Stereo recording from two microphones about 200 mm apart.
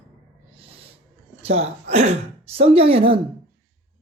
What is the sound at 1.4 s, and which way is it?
Speech, 30° right (ahead or behind).